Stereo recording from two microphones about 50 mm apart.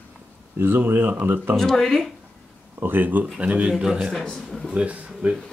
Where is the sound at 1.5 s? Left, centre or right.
Centre.